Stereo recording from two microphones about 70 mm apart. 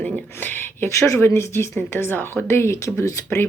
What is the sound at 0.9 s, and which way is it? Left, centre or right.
Speech, left.